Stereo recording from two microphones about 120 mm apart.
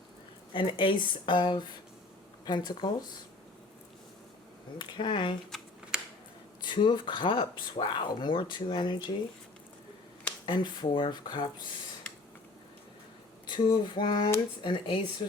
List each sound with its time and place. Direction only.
0.5 s speech: 45° left (ahead or behind)
4.8 s speech: 40° left (ahead or behind)
6.6 s speech: 40° left (ahead or behind)
10.4 s speech: 40° left (ahead or behind)
13.5 s speech: 40° left (ahead or behind)